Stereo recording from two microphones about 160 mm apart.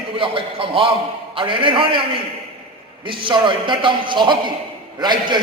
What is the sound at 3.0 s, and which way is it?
A man's voice, 30° right (ahead or behind).